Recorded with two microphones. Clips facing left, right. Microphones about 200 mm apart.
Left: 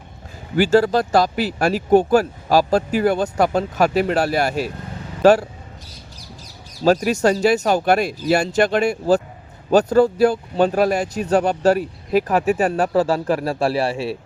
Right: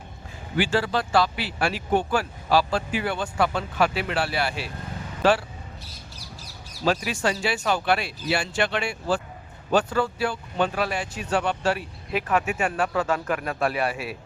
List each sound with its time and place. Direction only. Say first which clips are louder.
0.5 s speech: left 9 dB; 40° left (ahead or behind)
6.8 s speech: left 8 dB; 40° left (ahead or behind)